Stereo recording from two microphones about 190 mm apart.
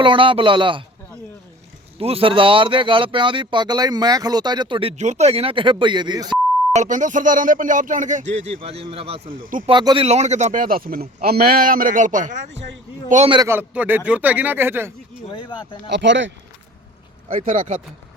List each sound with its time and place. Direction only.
0.0 s speech: 25° right (ahead or behind)
2.0 s speech: 30° right (ahead or behind)
6.7 s speech: 40° right (ahead or behind)
9.3 s speech: 45° right (ahead or behind)
9.6 s speech: 25° right (ahead or behind)
13.3 s speech: 15° right (ahead or behind)
15.3 s speech: 25° left (ahead or behind)
15.9 s speech: 70° right (ahead or behind)
17.2 s speech: 45° right (ahead or behind)